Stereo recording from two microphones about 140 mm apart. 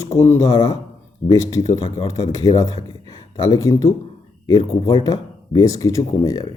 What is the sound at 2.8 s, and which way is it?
Speech, 25° left (ahead or behind).